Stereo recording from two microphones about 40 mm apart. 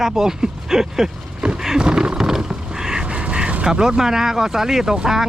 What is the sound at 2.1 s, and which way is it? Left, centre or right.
Horse, centre.